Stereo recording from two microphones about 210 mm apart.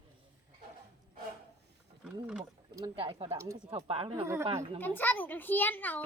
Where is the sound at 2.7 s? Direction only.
20° right (ahead or behind).